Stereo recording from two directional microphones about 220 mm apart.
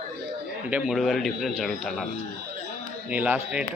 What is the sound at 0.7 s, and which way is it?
A man's voice, 5° right (ahead or behind).